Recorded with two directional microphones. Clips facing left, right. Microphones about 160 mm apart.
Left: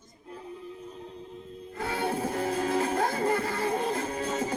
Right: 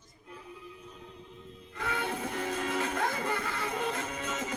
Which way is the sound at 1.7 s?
35° left (ahead or behind).